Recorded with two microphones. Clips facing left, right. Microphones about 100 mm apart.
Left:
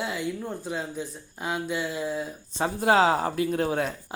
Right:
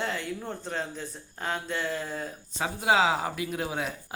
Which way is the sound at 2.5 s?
45° left (ahead or behind).